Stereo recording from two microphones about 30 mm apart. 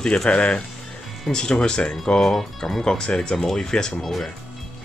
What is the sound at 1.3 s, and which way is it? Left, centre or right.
Speech, left.